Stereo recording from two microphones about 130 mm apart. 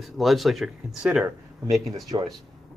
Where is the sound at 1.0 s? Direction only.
10° right (ahead or behind).